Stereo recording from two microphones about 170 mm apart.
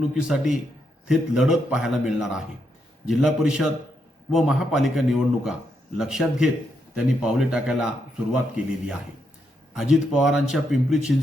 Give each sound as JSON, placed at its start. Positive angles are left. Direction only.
{"t": 0.1, "sound": "speech", "side_deg": -5}